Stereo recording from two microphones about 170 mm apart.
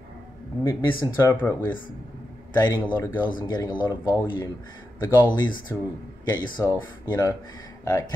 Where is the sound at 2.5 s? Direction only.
25° left (ahead or behind).